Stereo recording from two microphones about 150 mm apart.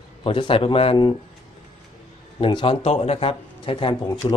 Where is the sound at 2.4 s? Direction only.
35° left (ahead or behind).